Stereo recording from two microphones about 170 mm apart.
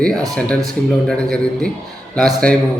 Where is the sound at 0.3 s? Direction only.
5° left (ahead or behind).